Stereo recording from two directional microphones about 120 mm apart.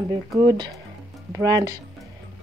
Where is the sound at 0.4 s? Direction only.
35° right (ahead or behind).